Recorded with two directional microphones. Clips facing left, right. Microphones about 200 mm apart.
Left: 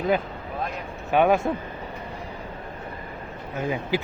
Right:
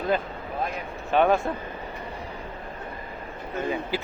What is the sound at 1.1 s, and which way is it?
Speech, 10° left (ahead or behind).